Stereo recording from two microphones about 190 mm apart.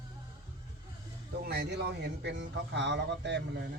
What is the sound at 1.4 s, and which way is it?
A man's voice, 60° right (ahead or behind).